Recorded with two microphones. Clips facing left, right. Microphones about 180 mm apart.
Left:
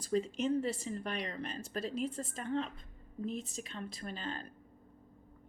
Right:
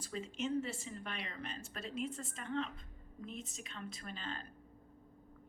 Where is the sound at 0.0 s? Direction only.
40° left (ahead or behind).